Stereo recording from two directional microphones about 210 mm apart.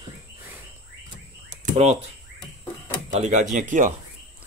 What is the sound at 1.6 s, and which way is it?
Speech, 35° right (ahead or behind).